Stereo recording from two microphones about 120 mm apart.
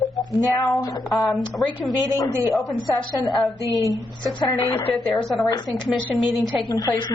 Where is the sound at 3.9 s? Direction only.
40° left (ahead or behind).